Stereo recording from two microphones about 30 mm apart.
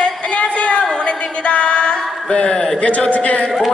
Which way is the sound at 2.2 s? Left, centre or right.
Left.